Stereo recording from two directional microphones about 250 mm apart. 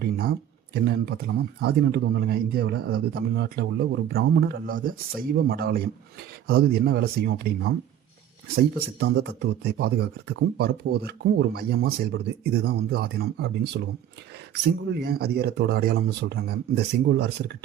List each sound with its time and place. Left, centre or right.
0.0 s speech: right
9.0 s speech: right